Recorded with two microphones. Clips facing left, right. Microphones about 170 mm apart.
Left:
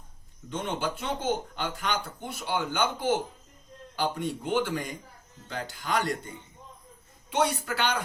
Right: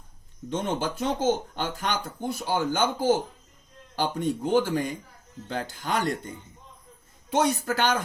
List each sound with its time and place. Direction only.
0.5 s speech: 40° right (ahead or behind)
7.6 s speech: 45° right (ahead or behind)